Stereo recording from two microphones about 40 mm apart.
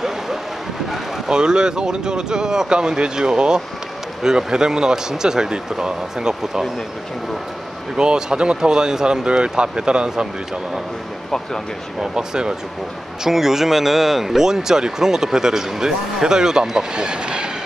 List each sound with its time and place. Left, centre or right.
1.2 s speech: centre
7.9 s speech: right
12.0 s speech: centre